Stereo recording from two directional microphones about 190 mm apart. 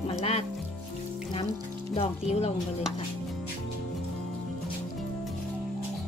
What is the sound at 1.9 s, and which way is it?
Speech, 35° left (ahead or behind).